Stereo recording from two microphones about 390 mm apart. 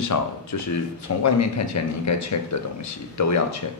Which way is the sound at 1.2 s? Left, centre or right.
Left.